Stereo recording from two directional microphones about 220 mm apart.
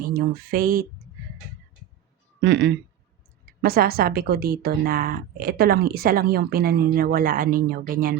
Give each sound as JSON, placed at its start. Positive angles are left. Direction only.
{"t": 0.1, "sound": "a woman's voice", "side_deg": -45}
{"t": 2.4, "sound": "a woman's voice", "side_deg": -50}